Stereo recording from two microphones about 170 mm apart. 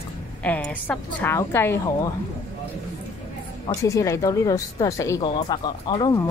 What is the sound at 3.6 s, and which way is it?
Speech, 20° left (ahead or behind).